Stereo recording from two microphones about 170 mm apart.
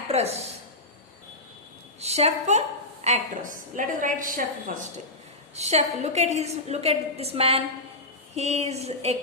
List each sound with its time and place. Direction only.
0.1 s a woman's voice: 40° right (ahead or behind)
2.0 s a woman's voice: 40° right (ahead or behind)
5.5 s a woman's voice: 40° right (ahead or behind)